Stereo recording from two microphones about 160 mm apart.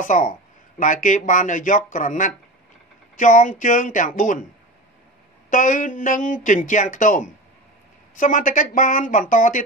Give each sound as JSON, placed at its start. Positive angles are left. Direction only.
{"t": 0.0, "sound": "speech", "side_deg": 55}
{"t": 5.5, "sound": "speech", "side_deg": 55}